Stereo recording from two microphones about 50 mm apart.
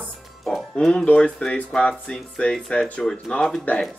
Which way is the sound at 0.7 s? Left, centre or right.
Centre.